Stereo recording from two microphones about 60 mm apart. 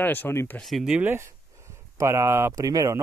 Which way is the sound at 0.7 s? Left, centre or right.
Centre.